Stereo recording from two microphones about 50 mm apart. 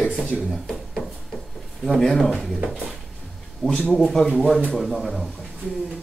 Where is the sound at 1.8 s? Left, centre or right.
Centre.